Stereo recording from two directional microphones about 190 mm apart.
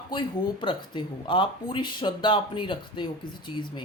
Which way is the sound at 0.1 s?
25° left (ahead or behind).